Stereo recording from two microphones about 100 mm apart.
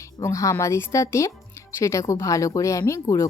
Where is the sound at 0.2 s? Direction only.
30° left (ahead or behind).